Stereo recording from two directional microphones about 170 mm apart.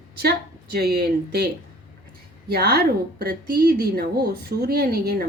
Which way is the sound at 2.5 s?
65° right (ahead or behind).